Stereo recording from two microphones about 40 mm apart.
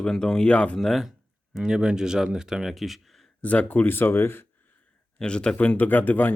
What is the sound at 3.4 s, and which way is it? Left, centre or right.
Speech, left.